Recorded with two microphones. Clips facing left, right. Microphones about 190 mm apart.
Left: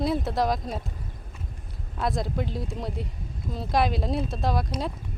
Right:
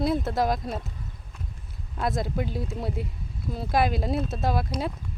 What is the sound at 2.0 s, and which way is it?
Speech, centre (ahead or behind).